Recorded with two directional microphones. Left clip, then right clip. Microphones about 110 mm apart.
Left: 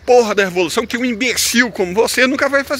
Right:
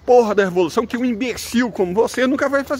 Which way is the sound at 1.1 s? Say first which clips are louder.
Left 7 dB; 15° right (ahead or behind).